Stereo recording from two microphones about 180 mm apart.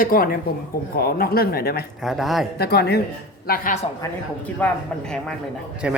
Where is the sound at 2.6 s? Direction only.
60° left (ahead or behind).